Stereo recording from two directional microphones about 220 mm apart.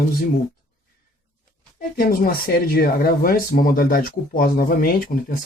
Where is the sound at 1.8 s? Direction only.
40° left (ahead or behind).